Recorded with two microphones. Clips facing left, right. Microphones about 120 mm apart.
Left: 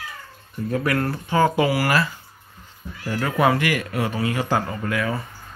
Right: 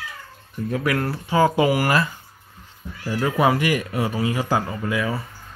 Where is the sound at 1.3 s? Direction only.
15° right (ahead or behind).